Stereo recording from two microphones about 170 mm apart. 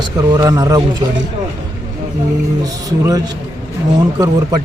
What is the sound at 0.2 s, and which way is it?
Speech, 25° right (ahead or behind).